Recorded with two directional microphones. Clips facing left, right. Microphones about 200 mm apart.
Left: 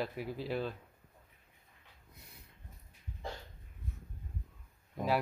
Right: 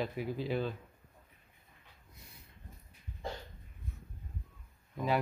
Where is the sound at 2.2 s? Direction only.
60° left (ahead or behind).